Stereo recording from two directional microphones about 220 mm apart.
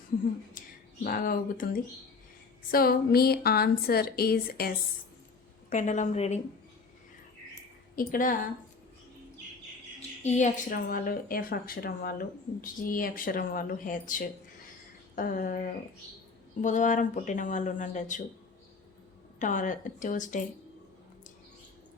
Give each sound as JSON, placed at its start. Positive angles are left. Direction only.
{"t": 0.6, "sound": "a sound", "side_deg": 40}
{"t": 1.0, "sound": "a woman's voice", "side_deg": 40}
{"t": 5.7, "sound": "a woman's voice", "side_deg": 35}
{"t": 7.9, "sound": "a woman's voice", "side_deg": 40}
{"t": 10.2, "sound": "a woman's voice", "side_deg": 30}
{"t": 19.4, "sound": "a woman's voice", "side_deg": 35}